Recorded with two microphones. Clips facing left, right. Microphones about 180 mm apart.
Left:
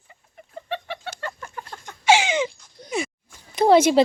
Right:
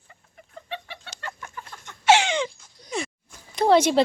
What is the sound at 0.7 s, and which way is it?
Chicken, 60° left (ahead or behind).